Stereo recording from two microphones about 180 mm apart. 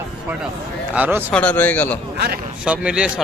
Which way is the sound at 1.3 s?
10° left (ahead or behind).